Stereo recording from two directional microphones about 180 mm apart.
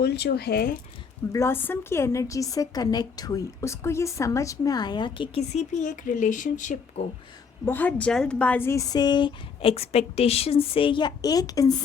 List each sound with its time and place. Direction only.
0.0 s speech: 65° left (ahead or behind)
1.3 s a woman's voice: 15° left (ahead or behind); by 7.1 s 35° left (ahead or behind)
7.6 s a woman's voice: 10° left (ahead or behind)